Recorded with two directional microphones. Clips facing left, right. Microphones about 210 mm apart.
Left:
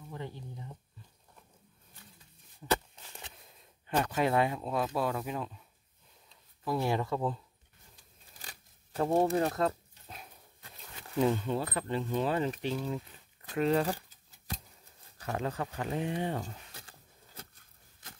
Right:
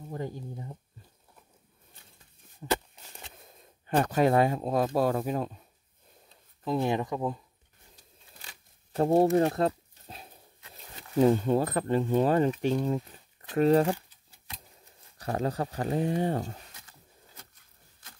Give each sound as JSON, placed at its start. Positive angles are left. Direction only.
{"t": 0.1, "sound": "speech", "side_deg": -45}
{"t": 2.6, "sound": "a sound", "side_deg": -45}
{"t": 3.5, "sound": "speech", "side_deg": -45}
{"t": 6.6, "sound": "speech", "side_deg": -20}
{"t": 8.9, "sound": "a sound", "side_deg": -35}
{"t": 10.7, "sound": "speech", "side_deg": -40}
{"t": 15.1, "sound": "speech", "side_deg": -40}